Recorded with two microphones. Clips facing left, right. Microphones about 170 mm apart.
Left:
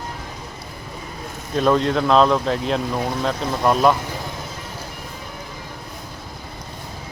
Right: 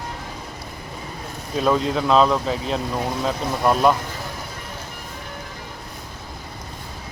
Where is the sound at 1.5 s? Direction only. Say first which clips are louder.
Left 2 dB; 5° right (ahead or behind).